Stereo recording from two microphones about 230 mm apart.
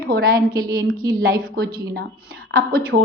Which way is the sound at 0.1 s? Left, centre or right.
Right.